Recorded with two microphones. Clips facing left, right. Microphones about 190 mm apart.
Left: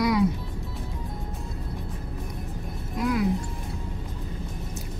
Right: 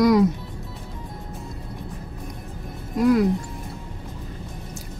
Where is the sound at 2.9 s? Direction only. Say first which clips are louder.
Right 8 dB; 50° right (ahead or behind).